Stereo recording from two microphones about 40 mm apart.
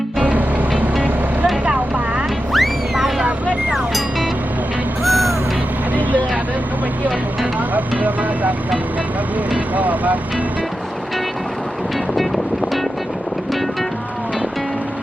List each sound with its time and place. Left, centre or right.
0.2 s music: right
1.6 s vehicle: right
2.5 s vehicle: centre
5.0 s music: centre
5.9 s vehicle: right
7.7 s speech: right
9.7 s speech: right